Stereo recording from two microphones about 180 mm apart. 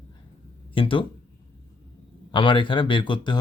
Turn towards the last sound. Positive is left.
turn(degrees=25)  # may be behind; listen again after turning